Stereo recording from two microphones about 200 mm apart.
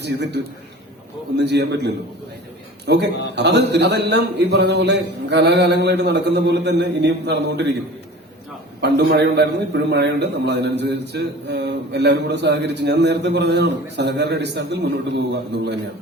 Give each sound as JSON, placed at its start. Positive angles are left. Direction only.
{"t": 0.0, "sound": "a man's voice", "side_deg": -60}
{"t": 8.8, "sound": "a man's voice", "side_deg": -55}